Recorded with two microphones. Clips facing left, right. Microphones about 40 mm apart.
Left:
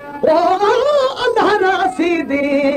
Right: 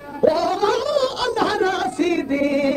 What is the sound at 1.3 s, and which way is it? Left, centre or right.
Music, left.